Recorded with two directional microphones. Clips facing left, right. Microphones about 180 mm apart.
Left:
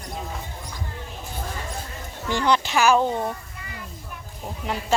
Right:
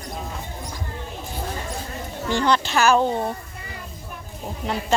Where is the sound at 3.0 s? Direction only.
20° right (ahead or behind).